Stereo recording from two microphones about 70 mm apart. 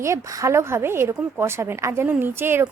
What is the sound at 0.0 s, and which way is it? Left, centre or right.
Speech, right.